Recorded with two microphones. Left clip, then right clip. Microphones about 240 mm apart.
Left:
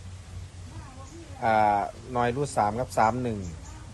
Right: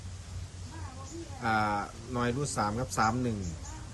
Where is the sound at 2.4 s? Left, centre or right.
Centre.